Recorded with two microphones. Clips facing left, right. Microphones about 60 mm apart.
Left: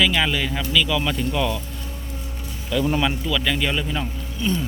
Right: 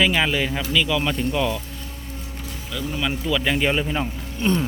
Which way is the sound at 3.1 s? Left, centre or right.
Centre.